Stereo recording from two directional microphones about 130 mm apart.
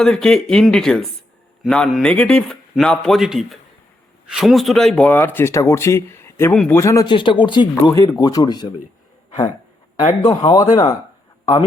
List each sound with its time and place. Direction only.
0.0 s speech: 5° left (ahead or behind); by 7.0 s 20° left (ahead or behind)
7.0 s speech: 40° left (ahead or behind)
10.2 s speech: 30° left (ahead or behind)